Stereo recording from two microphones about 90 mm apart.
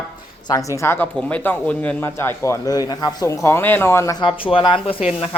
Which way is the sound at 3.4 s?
25° left (ahead or behind).